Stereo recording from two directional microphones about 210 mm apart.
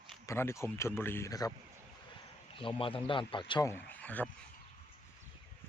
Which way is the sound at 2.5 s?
25° left (ahead or behind).